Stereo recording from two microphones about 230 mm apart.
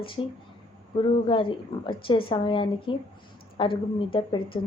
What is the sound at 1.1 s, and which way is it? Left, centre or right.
A woman's voice, left.